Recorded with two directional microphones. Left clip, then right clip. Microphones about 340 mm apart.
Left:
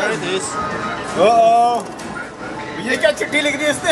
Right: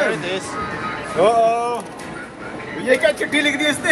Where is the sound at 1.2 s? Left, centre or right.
Right.